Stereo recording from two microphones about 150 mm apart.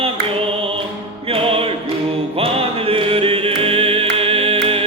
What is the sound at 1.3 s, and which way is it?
Music, 40° right (ahead or behind).